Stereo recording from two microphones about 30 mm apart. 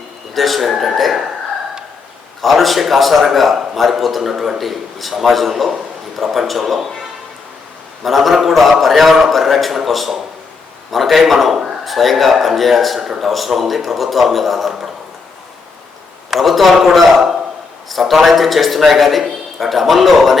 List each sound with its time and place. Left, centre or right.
0.3 s a man's voice: centre
2.4 s a man's voice: centre
8.0 s a man's voice: centre
16.3 s a man's voice: centre